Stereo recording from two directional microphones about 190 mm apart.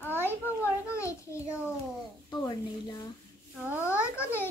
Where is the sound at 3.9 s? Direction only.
10° left (ahead or behind).